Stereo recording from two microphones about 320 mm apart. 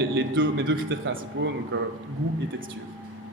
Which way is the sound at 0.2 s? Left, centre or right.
Right.